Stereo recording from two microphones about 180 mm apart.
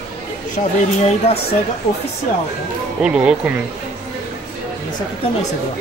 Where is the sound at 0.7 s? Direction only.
40° left (ahead or behind).